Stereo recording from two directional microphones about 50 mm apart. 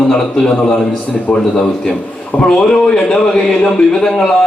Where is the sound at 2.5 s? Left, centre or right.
Centre.